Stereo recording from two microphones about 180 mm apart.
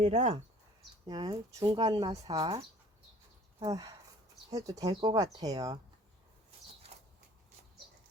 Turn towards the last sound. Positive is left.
turn(degrees=-35)  # may be behind; listen again after turning